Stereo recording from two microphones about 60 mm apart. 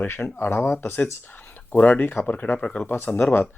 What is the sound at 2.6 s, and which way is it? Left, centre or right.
Speech, centre.